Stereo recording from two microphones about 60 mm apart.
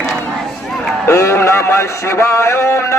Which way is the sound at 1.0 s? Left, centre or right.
Left.